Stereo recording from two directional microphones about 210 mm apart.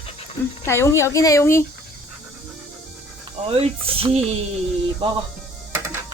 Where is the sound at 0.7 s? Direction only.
15° left (ahead or behind).